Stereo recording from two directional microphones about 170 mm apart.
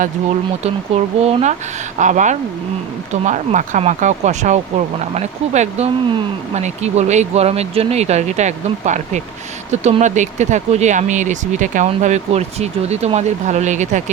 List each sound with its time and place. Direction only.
1.2 s speech: 40° right (ahead or behind)